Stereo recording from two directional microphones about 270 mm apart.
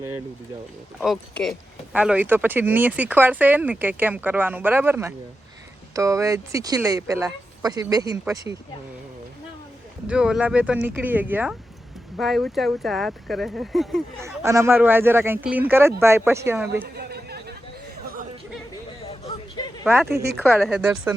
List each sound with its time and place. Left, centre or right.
0.9 s speech: centre
10.1 s speech: centre
14.3 s speech: centre
16.8 s chatter: right
19.8 s speech: centre
20.1 s speech: right
20.4 s speech: centre